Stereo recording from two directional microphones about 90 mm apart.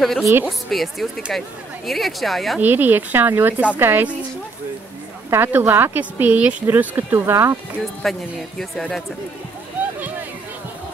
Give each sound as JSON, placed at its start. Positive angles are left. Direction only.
{"t": 0.2, "sound": "speech", "side_deg": -30}
{"t": 0.5, "sound": "speech", "side_deg": 0}
{"t": 2.6, "sound": "speech", "side_deg": -20}
{"t": 5.3, "sound": "speech", "side_deg": -25}
{"t": 8.0, "sound": "speech", "side_deg": 5}